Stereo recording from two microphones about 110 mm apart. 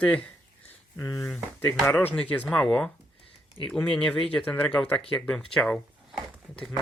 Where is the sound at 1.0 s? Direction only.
30° left (ahead or behind).